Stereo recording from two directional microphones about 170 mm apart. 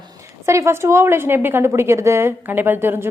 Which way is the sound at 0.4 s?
15° right (ahead or behind).